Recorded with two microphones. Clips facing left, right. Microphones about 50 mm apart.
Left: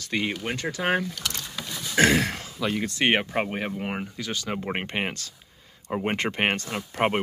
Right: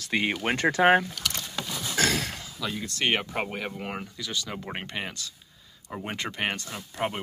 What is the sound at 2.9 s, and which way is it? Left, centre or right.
Speech, left.